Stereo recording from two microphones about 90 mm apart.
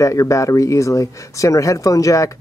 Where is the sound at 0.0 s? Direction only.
35° left (ahead or behind).